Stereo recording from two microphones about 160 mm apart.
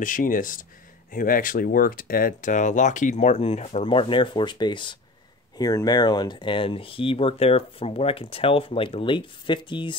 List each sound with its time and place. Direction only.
0.0 s speech: 55° left (ahead or behind); by 9.9 s 30° left (ahead or behind)